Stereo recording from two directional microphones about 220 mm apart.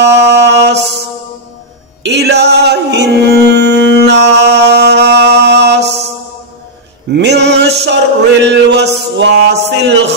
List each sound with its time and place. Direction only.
0.0 s mantra: 50° right (ahead or behind)
2.0 s singing: 50° right (ahead or behind)
7.1 s a sound: 50° right (ahead or behind)